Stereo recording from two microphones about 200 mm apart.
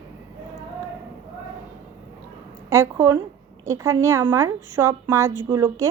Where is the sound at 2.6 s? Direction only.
15° right (ahead or behind).